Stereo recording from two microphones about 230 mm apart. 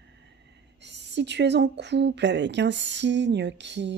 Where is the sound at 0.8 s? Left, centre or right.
Right.